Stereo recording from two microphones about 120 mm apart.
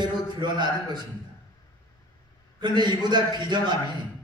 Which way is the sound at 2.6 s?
40° right (ahead or behind).